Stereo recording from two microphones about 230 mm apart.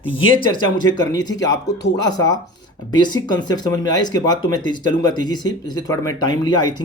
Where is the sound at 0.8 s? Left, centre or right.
Centre.